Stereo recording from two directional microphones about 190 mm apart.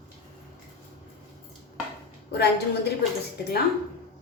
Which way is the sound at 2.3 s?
60° left (ahead or behind).